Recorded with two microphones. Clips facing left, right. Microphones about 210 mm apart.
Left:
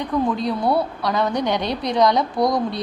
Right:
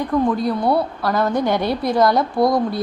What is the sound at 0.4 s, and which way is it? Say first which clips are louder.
A woman's voice: right 2 dB; centre (ahead or behind).